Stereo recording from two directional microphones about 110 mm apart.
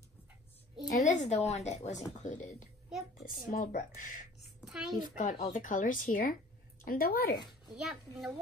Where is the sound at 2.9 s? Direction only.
5° right (ahead or behind).